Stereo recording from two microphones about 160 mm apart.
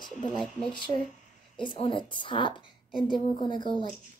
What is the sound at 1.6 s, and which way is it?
A woman's voice, 30° left (ahead or behind).